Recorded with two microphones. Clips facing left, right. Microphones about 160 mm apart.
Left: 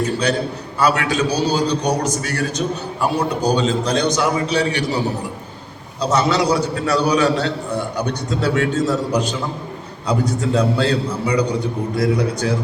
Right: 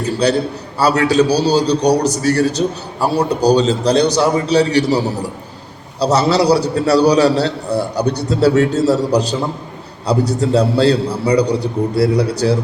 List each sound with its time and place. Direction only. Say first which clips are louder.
0.2 s a man's voice: right 4 dB; 35° right (ahead or behind)